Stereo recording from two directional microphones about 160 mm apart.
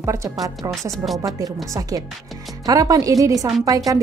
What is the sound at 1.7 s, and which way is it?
A woman's voice, 20° right (ahead or behind).